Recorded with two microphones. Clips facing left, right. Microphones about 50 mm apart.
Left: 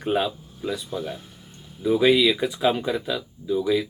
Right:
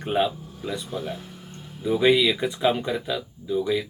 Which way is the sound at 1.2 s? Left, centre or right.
Right.